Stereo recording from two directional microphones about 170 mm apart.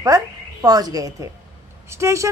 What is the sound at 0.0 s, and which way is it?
A woman's voice, 20° right (ahead or behind).